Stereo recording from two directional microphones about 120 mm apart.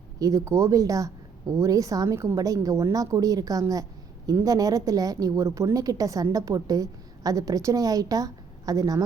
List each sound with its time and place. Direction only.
0.2 s a woman's voice: 25° right (ahead or behind)